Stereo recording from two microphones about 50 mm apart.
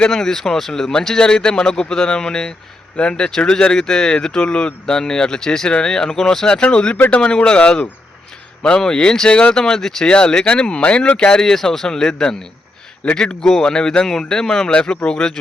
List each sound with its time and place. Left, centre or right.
0.1 s speech: centre